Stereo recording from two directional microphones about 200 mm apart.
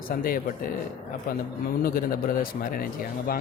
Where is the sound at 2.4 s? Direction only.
45° left (ahead or behind).